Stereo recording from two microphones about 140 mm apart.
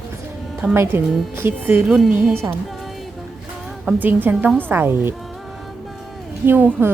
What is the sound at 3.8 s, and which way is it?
A woman's voice, 15° right (ahead or behind).